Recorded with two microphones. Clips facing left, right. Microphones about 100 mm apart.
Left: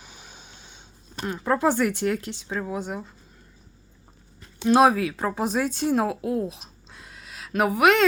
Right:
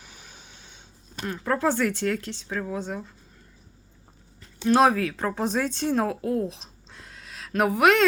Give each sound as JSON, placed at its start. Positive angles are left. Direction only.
{"t": 0.0, "sound": "a sound", "side_deg": 20}
{"t": 1.3, "sound": "speech", "side_deg": 15}
{"t": 4.6, "sound": "speech", "side_deg": 15}